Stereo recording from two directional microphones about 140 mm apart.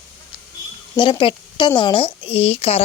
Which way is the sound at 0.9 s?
35° left (ahead or behind).